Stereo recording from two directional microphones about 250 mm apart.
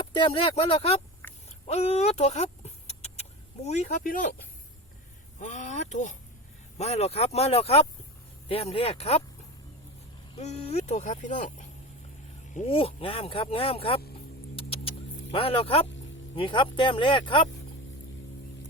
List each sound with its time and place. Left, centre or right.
0.1 s speech: centre
1.2 s a sound: centre
1.6 s speech: left
5.4 s speech: left
10.3 s speech: left
12.5 s speech: left
14.5 s vehicle: left
16.3 s speech: centre